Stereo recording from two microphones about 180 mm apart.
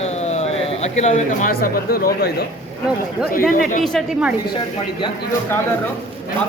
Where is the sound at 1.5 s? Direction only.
55° left (ahead or behind).